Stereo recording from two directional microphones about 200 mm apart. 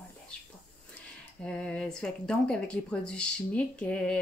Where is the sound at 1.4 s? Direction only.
5° left (ahead or behind).